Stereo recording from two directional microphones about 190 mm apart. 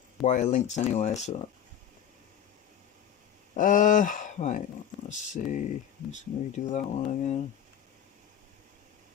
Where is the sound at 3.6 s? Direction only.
45° left (ahead or behind).